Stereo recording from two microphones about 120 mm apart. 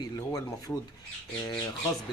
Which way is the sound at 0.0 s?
30° left (ahead or behind).